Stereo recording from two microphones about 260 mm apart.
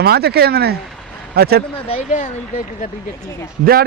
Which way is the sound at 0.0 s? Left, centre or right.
Right.